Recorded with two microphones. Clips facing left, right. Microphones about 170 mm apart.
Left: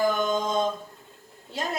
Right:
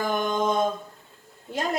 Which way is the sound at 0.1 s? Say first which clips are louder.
Right 1 dB; 55° right (ahead or behind).